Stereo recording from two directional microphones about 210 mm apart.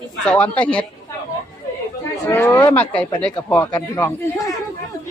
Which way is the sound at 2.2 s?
15° left (ahead or behind).